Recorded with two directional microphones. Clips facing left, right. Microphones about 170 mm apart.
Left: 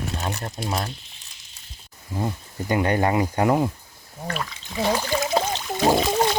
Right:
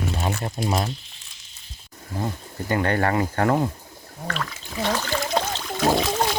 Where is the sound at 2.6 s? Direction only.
15° left (ahead or behind).